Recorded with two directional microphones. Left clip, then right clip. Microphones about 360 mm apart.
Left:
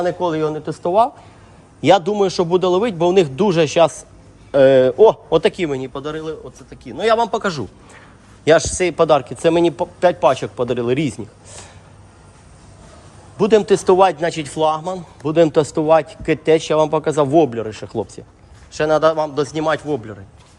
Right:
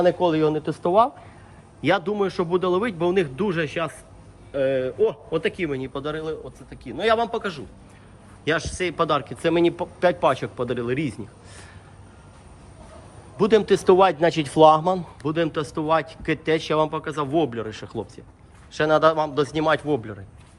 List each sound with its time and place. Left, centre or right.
0.0 s a man's voice: centre
13.3 s speech: centre